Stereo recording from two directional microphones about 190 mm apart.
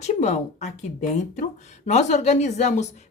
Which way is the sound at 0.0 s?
35° left (ahead or behind).